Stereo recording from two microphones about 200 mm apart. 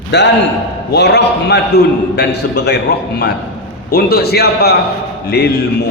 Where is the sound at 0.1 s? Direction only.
60° left (ahead or behind).